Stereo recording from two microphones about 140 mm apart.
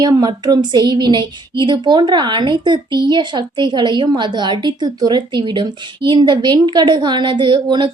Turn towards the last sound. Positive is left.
turn(degrees=-35)  # may be behind; listen again after turning